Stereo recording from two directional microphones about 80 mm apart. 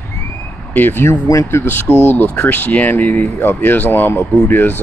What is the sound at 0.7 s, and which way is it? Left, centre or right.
Speech, left.